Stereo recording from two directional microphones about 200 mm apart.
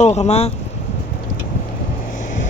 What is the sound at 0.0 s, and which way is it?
Speech, 35° left (ahead or behind).